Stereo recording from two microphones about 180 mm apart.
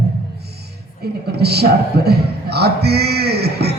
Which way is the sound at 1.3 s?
65° right (ahead or behind).